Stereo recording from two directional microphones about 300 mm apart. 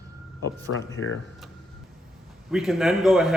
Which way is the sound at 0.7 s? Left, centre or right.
Left.